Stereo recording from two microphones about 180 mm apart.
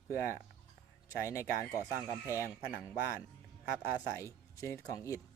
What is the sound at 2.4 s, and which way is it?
Speech, 10° right (ahead or behind).